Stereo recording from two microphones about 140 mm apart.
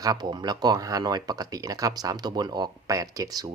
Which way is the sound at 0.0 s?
30° right (ahead or behind).